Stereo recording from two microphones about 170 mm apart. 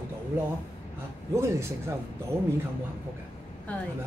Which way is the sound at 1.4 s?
15° right (ahead or behind).